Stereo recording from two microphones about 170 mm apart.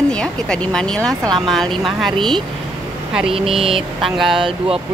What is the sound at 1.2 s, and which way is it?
Speech, 30° right (ahead or behind).